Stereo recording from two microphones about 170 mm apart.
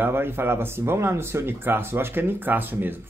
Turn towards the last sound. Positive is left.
turn(degrees=-10)  # may be behind; listen again after turning